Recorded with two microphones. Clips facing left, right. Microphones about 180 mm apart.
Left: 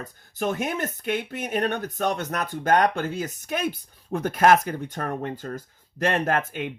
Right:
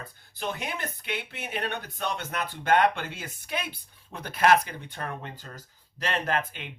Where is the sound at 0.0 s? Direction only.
45° left (ahead or behind).